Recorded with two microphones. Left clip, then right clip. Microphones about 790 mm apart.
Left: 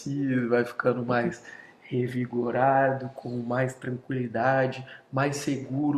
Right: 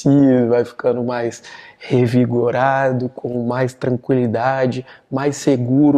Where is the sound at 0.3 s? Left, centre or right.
Right.